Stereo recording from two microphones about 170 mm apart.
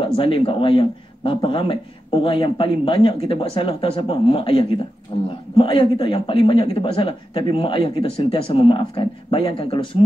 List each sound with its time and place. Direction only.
0.0 s speech: 30° left (ahead or behind)